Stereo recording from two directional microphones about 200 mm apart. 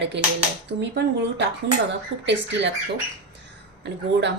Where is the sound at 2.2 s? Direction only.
60° right (ahead or behind).